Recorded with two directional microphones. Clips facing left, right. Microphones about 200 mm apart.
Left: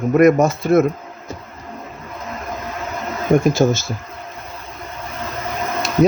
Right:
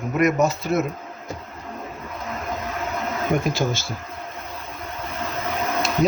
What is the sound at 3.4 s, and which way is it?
Speech, 45° left (ahead or behind).